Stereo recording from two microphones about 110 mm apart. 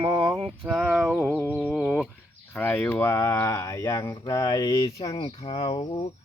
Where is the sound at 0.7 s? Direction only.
5° right (ahead or behind).